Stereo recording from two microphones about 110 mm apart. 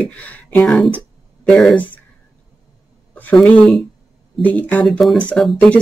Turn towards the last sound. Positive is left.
turn(degrees=5)  # may be behind; listen again after turning